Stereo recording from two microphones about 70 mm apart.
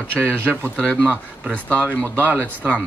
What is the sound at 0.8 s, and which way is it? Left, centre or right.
Speech, centre.